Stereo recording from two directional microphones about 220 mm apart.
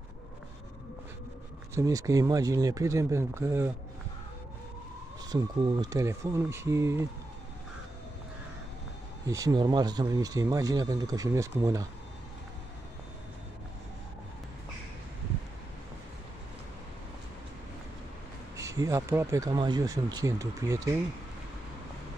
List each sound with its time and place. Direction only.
1.8 s speech: 15° right (ahead or behind)
5.3 s speech: 20° right (ahead or behind)
9.3 s speech: 15° right (ahead or behind)
18.6 s speech: 15° right (ahead or behind)